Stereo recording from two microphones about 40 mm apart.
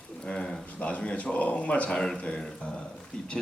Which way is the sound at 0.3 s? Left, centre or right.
Left.